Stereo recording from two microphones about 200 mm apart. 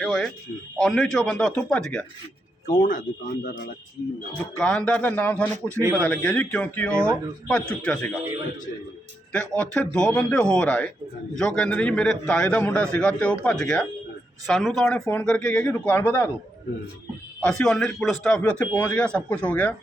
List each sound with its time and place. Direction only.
0.0 s a sound: centre (ahead or behind)
0.8 s a man's voice: centre (ahead or behind)
2.6 s speech: 40° left (ahead or behind)
4.5 s speech: 5° left (ahead or behind)
5.6 s a man's voice: 15° right (ahead or behind)
6.0 s a man's voice: 5° left (ahead or behind)
6.9 s a man's voice: 15° right (ahead or behind)
7.7 s a man's voice: 5° left (ahead or behind)
9.3 s a man's voice: 5° left (ahead or behind)
17.4 s a man's voice: 5° left (ahead or behind)